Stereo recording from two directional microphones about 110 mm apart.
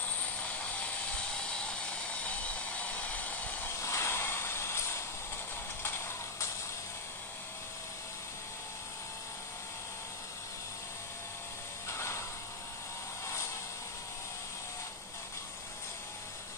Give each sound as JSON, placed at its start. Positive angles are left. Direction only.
{"t": 0.2, "sound": "helicopter", "side_deg": 10}
{"t": 3.8, "sound": "a sound", "side_deg": 25}
{"t": 11.9, "sound": "mechanisms", "side_deg": 25}